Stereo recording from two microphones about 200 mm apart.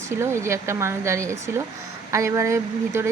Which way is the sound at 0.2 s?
15° right (ahead or behind).